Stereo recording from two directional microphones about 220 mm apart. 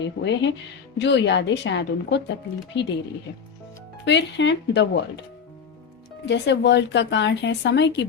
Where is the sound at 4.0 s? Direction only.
55° left (ahead or behind).